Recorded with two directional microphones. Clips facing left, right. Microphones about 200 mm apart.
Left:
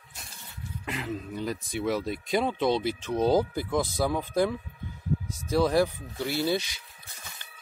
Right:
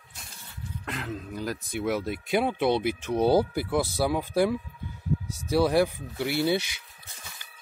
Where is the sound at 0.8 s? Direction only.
Centre (ahead or behind).